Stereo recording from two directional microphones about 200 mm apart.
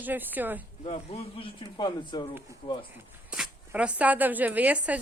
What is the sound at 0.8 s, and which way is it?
Speech, 30° left (ahead or behind).